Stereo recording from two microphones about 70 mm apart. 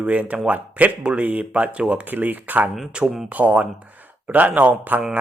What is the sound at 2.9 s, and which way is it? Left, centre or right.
Speech, centre.